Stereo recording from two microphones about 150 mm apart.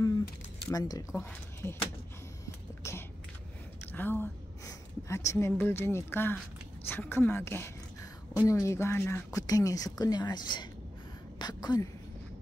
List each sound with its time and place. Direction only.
0.7 s a woman's voice: 25° left (ahead or behind)
3.9 s a woman's voice: 15° left (ahead or behind)